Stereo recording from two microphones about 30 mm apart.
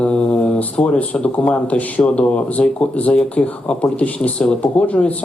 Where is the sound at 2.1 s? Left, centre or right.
Left.